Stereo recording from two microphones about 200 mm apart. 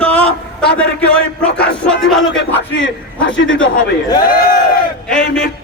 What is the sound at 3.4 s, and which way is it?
Speech, 75° left (ahead or behind).